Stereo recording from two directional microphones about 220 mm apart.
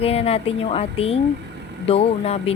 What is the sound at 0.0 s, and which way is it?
A woman's voice, 25° left (ahead or behind).